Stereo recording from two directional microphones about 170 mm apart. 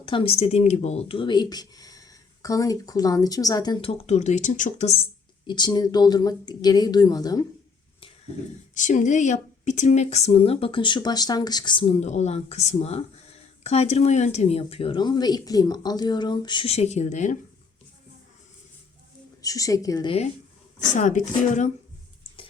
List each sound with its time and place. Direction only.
0.0 s speech: 30° left (ahead or behind)
5.5 s speech: 25° left (ahead or behind)
8.7 s speech: 45° left (ahead or behind)
19.4 s speech: 20° left (ahead or behind)
20.7 s speech: 45° left (ahead or behind)